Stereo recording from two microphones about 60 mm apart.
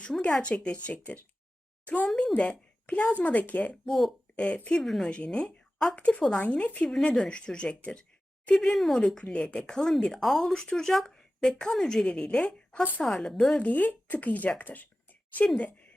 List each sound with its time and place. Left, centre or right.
0.2 s speech: centre
2.3 s speech: left
3.8 s a woman's voice: centre
4.4 s speech: centre
4.8 s a woman's voice: centre
5.1 s speech: centre
6.0 s speech: left
13.6 s speech: left